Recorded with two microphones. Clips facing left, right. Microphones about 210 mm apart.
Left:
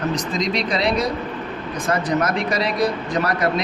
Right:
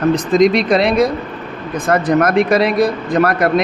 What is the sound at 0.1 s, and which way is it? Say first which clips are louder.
A man's voice: right 11 dB; 55° right (ahead or behind).